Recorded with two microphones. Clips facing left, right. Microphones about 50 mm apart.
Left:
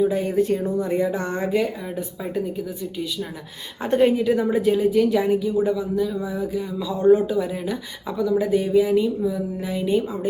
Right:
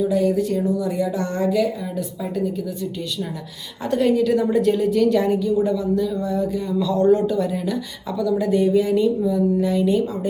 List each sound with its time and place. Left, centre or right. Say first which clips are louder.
0.0 s speech: right 1 dB; left
3.8 s a woman's voice: even; left